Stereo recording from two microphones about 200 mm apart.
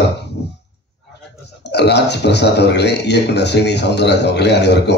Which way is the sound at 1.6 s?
55° left (ahead or behind).